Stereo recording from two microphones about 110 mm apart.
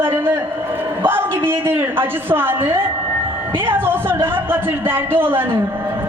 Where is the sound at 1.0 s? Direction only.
20° right (ahead or behind).